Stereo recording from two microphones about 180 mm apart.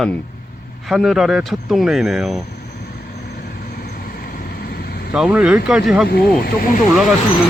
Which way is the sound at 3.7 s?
60° left (ahead or behind).